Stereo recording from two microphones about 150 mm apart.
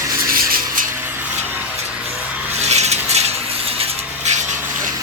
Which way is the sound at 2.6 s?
45° right (ahead or behind).